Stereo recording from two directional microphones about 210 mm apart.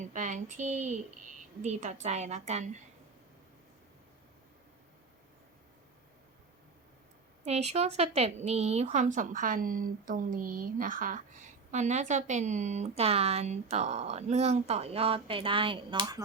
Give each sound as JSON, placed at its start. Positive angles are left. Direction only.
{"t": 0.0, "sound": "a woman's voice", "side_deg": -35}
{"t": 7.4, "sound": "a woman's voice", "side_deg": -30}